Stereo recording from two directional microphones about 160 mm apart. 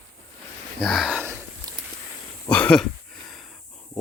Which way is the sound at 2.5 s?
5° left (ahead or behind).